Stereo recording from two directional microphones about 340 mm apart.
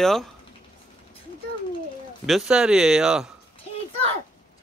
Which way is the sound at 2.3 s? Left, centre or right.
Centre.